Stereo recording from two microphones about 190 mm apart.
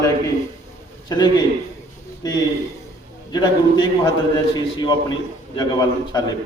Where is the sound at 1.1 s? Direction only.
20° left (ahead or behind).